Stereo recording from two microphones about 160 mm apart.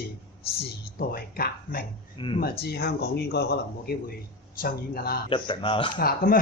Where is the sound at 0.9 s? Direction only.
70° left (ahead or behind).